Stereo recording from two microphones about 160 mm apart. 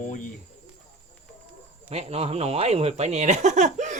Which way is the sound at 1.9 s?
40° right (ahead or behind).